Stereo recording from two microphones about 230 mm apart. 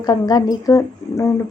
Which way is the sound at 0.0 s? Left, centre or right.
Centre.